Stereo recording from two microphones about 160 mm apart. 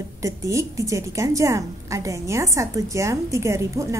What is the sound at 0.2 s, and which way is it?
A woman's voice, 20° right (ahead or behind).